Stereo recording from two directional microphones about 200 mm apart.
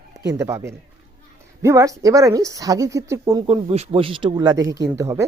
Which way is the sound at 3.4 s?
30° right (ahead or behind).